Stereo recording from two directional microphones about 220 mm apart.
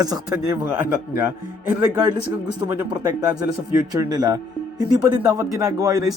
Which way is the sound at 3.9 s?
15° right (ahead or behind).